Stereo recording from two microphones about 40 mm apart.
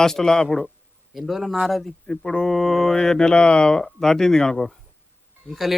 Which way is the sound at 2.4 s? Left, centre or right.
Centre.